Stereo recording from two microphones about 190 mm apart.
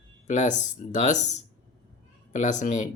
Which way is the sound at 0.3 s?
40° left (ahead or behind).